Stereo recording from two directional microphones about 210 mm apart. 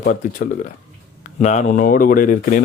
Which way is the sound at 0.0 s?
40° left (ahead or behind).